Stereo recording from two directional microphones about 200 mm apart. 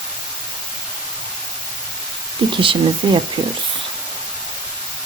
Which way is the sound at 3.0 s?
25° right (ahead or behind).